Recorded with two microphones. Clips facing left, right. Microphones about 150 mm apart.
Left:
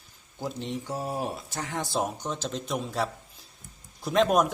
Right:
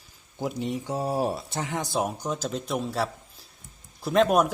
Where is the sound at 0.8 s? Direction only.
25° right (ahead or behind).